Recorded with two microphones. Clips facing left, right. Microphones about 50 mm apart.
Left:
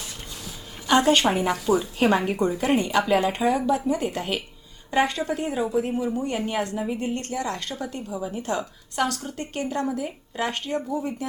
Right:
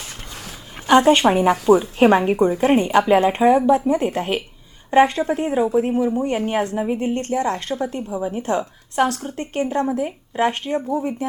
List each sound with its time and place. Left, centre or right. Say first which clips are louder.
0.9 s a woman's voice: right 6 dB; right
1.5 s speech: right 8 dB; right
1.8 s a woman's voice: right 6 dB; right